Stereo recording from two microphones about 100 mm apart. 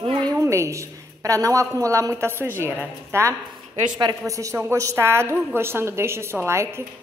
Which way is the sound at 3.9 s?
40° right (ahead or behind).